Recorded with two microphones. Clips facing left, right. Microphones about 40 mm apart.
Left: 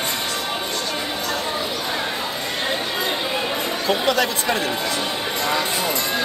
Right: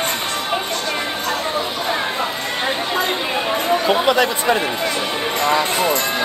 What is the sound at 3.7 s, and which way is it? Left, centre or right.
Speech, centre.